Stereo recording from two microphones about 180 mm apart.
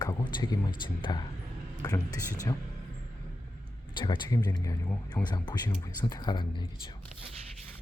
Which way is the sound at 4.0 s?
25° left (ahead or behind).